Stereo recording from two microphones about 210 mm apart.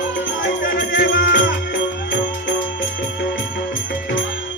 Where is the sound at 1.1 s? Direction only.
55° left (ahead or behind).